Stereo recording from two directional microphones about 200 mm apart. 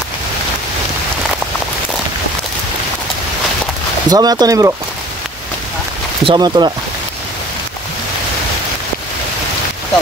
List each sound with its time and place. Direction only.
4.1 s speech: 20° right (ahead or behind)
6.2 s speech: 20° right (ahead or behind)